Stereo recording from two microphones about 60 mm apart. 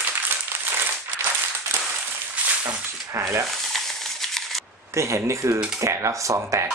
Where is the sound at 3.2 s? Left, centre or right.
Right.